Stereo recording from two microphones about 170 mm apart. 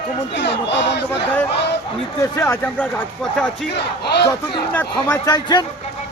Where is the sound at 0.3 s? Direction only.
90° left.